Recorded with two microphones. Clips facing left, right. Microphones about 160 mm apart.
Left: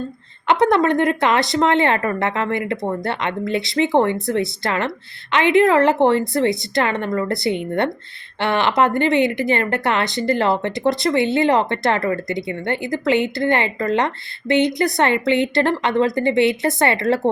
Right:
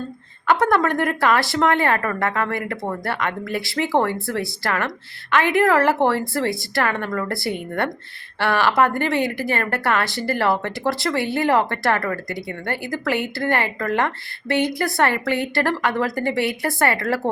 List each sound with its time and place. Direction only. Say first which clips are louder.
0.6 s speech: left 6 dB; 20° left (ahead or behind)